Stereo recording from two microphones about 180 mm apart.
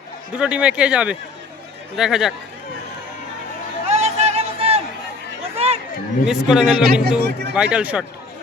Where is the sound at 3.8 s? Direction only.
35° right (ahead or behind).